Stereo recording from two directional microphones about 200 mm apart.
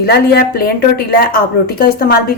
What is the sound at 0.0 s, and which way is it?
A woman's voice, 50° left (ahead or behind).